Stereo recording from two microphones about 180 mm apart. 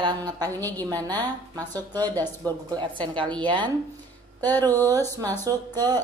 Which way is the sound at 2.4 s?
25° right (ahead or behind).